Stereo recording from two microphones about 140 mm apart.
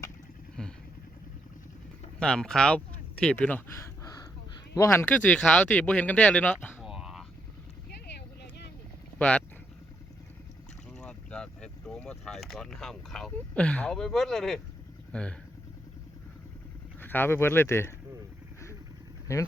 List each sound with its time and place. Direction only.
0.6 s vehicle: 5° left (ahead or behind)
2.1 s speech: 5° left (ahead or behind)
4.0 s crow: 25° left (ahead or behind)
4.7 s speech: 20° left (ahead or behind)
6.7 s a sound: 5° right (ahead or behind)
9.1 s boat: 10° left (ahead or behind)
10.9 s speech: 5° left (ahead or behind)
17.0 s speech: 15° left (ahead or behind)